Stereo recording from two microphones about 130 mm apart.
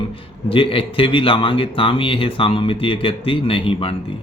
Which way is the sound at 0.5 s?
45° left (ahead or behind).